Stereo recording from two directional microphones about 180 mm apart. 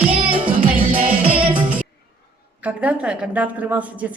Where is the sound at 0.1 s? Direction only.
30° right (ahead or behind).